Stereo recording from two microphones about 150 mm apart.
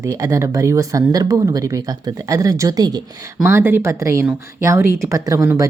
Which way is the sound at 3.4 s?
15° right (ahead or behind).